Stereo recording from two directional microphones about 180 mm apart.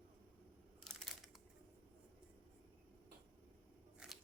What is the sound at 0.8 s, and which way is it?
Crushing, 5° left (ahead or behind).